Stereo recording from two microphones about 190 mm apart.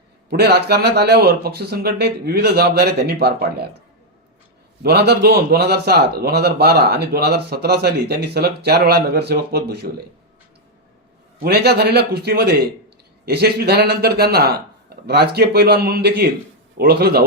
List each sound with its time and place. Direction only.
0.3 s a man's voice: 55° right (ahead or behind)
4.8 s a man's voice: 60° right (ahead or behind)
11.3 s a man's voice: 55° right (ahead or behind)